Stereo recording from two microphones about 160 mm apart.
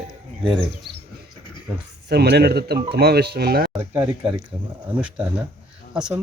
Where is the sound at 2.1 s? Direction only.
90° right; by 3.7 s 75° right (ahead or behind).